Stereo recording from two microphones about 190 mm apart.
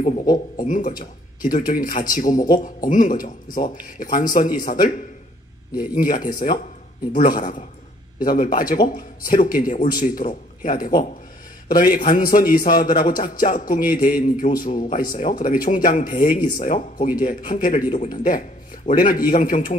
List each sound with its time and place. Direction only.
0.0 s speech: 45° left (ahead or behind)